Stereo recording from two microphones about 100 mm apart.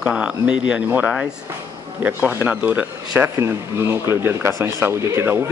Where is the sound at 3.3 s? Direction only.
30° right (ahead or behind).